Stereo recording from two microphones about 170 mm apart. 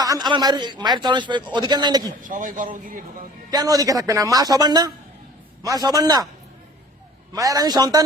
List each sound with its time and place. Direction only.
0.0 s a man's voice: 25° right (ahead or behind)
2.2 s a man's voice: 50° right (ahead or behind)
3.5 s a man's voice: 20° right (ahead or behind)
7.3 s a man's voice: 20° right (ahead or behind)